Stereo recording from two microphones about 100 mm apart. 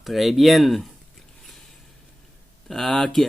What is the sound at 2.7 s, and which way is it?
Speech, 5° left (ahead or behind).